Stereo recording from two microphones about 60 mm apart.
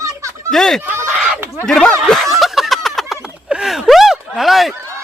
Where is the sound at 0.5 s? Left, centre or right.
Centre.